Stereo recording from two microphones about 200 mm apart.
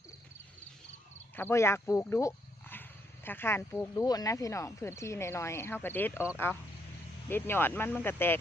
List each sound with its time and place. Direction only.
1.4 s speech: 10° left (ahead or behind)